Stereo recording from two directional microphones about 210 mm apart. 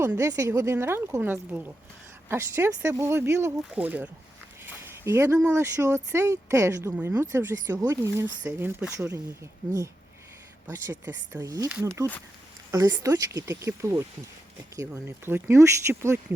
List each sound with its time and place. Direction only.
0.0 s speech: 15° right (ahead or behind)
4.6 s a sound: 10° right (ahead or behind)
5.4 s speech: 10° right (ahead or behind)
10.7 s speech: 15° right (ahead or behind)